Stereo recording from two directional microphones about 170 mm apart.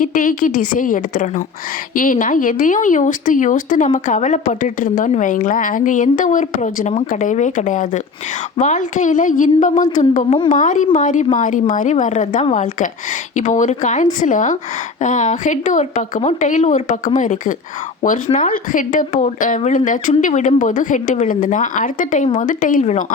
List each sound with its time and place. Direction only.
0.0 s speech: 55° left (ahead or behind)